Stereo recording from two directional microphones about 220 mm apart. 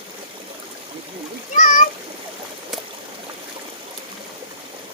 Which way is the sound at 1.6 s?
35° left (ahead or behind).